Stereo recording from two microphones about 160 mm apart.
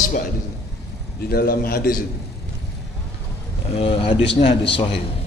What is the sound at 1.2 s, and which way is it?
Speech, 70° left (ahead or behind).